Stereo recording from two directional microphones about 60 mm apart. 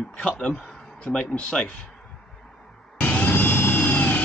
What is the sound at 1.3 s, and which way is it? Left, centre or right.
Speech, centre.